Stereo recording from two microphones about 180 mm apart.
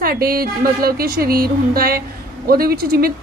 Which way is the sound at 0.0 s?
55° right (ahead or behind).